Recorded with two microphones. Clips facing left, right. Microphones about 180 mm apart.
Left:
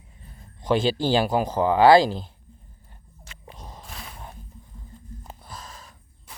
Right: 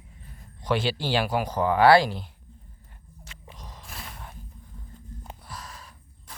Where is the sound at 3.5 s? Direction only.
30° left (ahead or behind).